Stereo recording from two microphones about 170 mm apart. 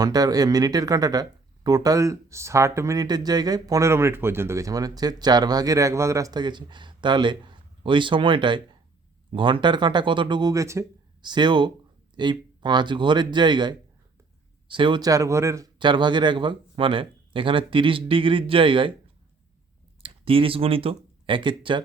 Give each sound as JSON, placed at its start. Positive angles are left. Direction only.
{"t": 0.0, "sound": "speech", "side_deg": -20}
{"t": 20.0, "sound": "speech", "side_deg": -30}